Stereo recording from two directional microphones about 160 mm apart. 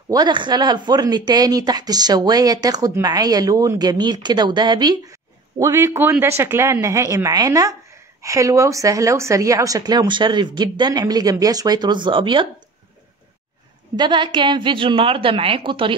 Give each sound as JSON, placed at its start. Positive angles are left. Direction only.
{"t": 0.1, "sound": "speech", "side_deg": -25}
{"t": 13.9, "sound": "a woman's voice", "side_deg": -30}